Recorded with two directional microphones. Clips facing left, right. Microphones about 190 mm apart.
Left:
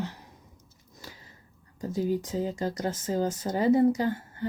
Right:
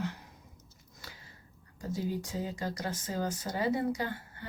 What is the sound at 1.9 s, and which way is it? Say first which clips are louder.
Speech: left 7 dB; 40° left (ahead or behind).